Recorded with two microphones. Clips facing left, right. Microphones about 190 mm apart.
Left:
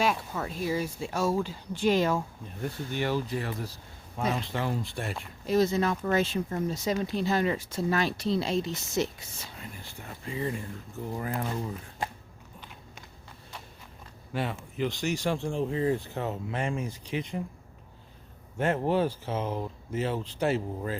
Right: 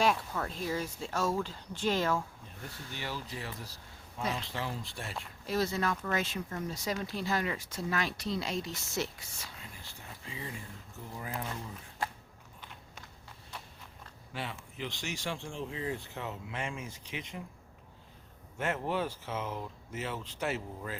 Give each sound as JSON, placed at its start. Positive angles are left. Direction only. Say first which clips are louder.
{"t": 0.0, "sound": "speech", "louder": "left 1 dB", "side_deg": 5}
{"t": 2.6, "sound": "speech", "louder": "left 11 dB", "side_deg": 55}
{"t": 5.1, "sound": "speech", "louder": "left 7 dB", "side_deg": 20}
{"t": 6.0, "sound": "speech", "louder": "left 7 dB", "side_deg": 30}
{"t": 9.6, "sound": "a sound", "louder": "left 6 dB", "side_deg": 55}
{"t": 11.1, "sound": "speech", "louder": "left 7 dB", "side_deg": 55}
{"t": 12.0, "sound": "a sound", "louder": "left 2 dB", "side_deg": 15}
{"t": 14.3, "sound": "speech", "louder": "left 9 dB", "side_deg": 50}
{"t": 18.5, "sound": "speech", "louder": "left 7 dB", "side_deg": 35}